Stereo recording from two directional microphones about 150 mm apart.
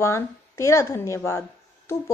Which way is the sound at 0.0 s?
20° left (ahead or behind).